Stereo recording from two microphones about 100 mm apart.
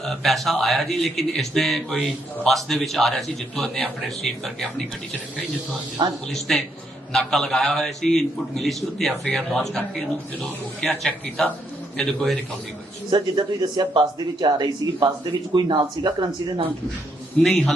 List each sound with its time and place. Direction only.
0.0 s a man's voice: centre (ahead or behind)
6.0 s speech: 45° right (ahead or behind)
6.5 s a man's voice: 10° left (ahead or behind)
13.1 s speech: 50° right (ahead or behind)
17.4 s a man's voice: 5° left (ahead or behind)